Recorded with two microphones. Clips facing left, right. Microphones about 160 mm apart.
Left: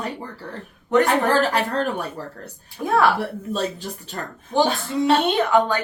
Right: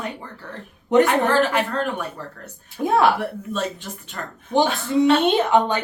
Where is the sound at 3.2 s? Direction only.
35° left (ahead or behind).